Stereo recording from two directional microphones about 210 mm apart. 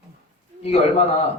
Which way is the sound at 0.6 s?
30° left (ahead or behind).